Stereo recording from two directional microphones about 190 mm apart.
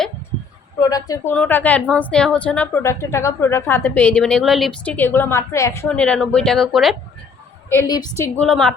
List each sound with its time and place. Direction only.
0.8 s a woman's voice: 20° left (ahead or behind); by 6.9 s centre (ahead or behind)
7.7 s a woman's voice: 15° left (ahead or behind)
8.2 s a woman's voice: 5° left (ahead or behind)